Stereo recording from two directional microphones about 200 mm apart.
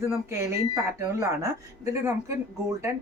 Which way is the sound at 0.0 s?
15° right (ahead or behind).